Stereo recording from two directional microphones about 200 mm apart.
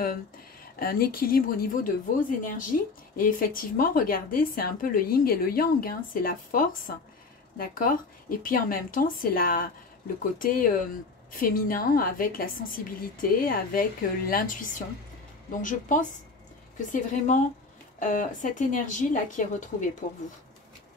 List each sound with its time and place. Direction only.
0.7 s a woman's voice: 50° left (ahead or behind)